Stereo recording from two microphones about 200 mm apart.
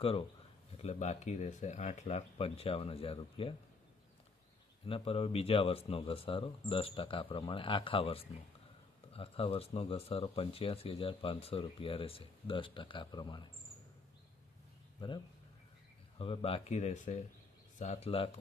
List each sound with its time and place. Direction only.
0.0 s speech: 25° left (ahead or behind)
4.9 s speech: 25° left (ahead or behind)
15.0 s speech: 25° left (ahead or behind)